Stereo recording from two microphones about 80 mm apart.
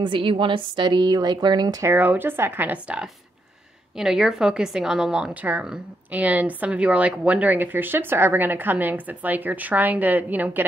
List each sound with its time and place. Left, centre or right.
0.0 s a woman's voice: right
2.0 s a woman's voice: right
4.0 s a woman's voice: centre